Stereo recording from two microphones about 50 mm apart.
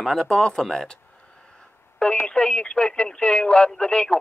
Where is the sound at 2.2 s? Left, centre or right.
Left.